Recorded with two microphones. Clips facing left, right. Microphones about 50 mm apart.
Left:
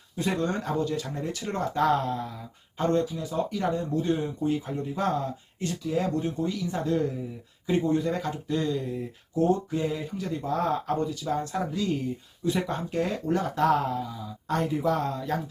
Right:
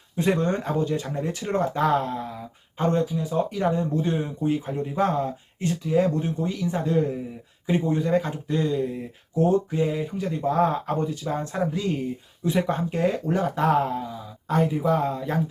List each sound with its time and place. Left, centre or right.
0.2 s speech: right
14.5 s speech: centre